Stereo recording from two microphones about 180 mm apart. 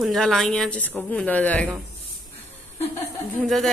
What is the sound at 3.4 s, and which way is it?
Speech, centre (ahead or behind).